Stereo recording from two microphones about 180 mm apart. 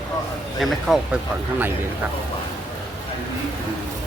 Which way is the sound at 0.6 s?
5° right (ahead or behind).